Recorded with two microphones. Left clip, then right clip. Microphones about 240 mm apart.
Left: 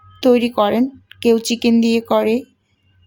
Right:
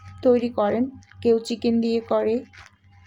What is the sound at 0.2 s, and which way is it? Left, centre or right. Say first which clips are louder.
Speech: left 6 dB; left.